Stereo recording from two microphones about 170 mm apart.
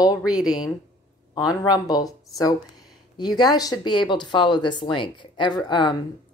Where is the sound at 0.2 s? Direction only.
5° right (ahead or behind).